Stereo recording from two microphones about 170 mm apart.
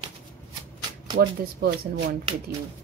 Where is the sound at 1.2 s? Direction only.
70° right (ahead or behind).